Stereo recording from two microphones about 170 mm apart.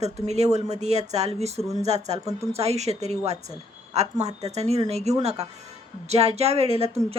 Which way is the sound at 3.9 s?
40° right (ahead or behind).